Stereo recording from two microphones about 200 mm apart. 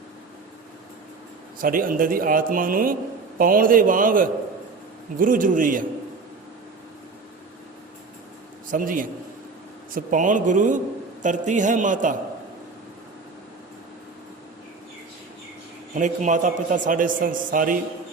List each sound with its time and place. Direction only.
1.6 s speech: 45° right (ahead or behind)
8.7 s a man's voice: 40° right (ahead or behind)
16.0 s a man's voice: 40° right (ahead or behind)